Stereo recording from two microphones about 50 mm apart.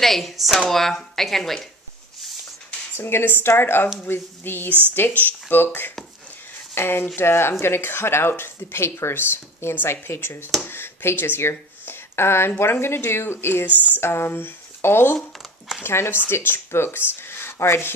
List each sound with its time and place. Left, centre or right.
0.0 s speech: centre
3.0 s speech: left
6.7 s speech: left